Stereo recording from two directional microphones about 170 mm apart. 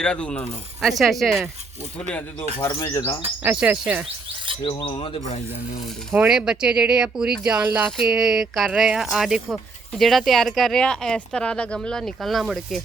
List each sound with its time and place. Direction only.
0.0 s speech: 5° left (ahead or behind)
2.6 s bird: 20° left (ahead or behind)
3.4 s insect: 10° right (ahead or behind)
4.6 s filing: 30° left (ahead or behind)
6.1 s speech: 5° right (ahead or behind)
7.4 s insect: 5° right (ahead or behind)
7.9 s speech: centre (ahead or behind)